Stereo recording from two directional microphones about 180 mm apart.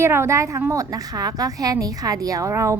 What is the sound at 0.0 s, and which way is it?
A woman's voice, 15° right (ahead or behind).